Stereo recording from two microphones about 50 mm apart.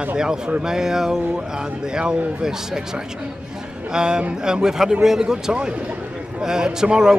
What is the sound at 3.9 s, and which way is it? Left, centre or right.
A man's voice, centre.